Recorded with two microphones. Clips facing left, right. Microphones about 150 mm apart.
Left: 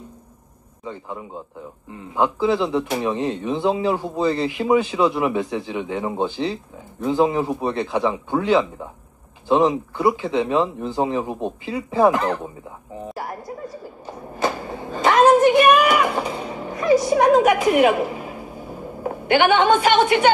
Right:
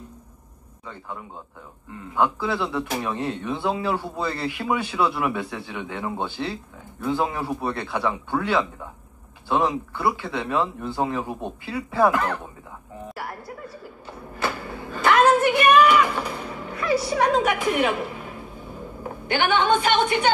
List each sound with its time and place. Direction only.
0.8 s speech: 25° left (ahead or behind)
13.1 s a sound: 20° left (ahead or behind)
15.7 s speech: 40° left (ahead or behind)
16.4 s music: 20° left (ahead or behind)
17.1 s a woman's voice: 45° left (ahead or behind)
17.9 s speech: 30° left (ahead or behind)
18.2 s a sound: 5° left (ahead or behind)
19.4 s a woman's voice: 50° left (ahead or behind)